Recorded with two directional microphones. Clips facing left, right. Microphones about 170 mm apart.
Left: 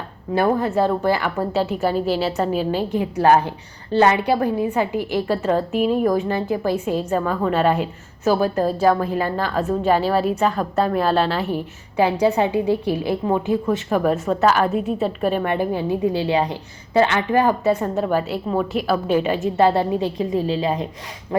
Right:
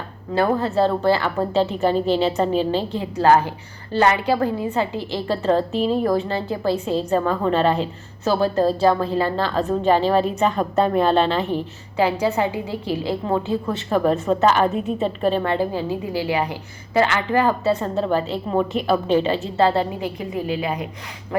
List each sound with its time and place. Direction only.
0.3 s a woman's voice: 10° left (ahead or behind); by 20.8 s 30° left (ahead or behind)